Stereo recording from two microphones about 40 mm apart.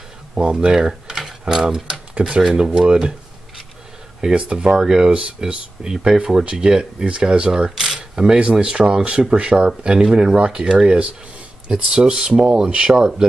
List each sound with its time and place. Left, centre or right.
0.4 s speech: centre
2.2 s speech: right
2.5 s speech: centre
8.4 s speech: right; by 13.3 s centre